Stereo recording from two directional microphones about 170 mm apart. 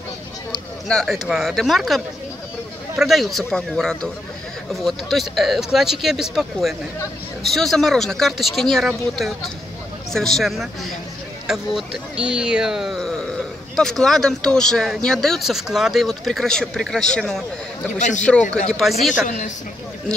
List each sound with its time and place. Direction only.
0.5 s speech: 5° left (ahead or behind)
17.9 s a woman's voice: 45° left (ahead or behind)
18.7 s speech: centre (ahead or behind)
19.2 s a woman's voice: 45° left (ahead or behind)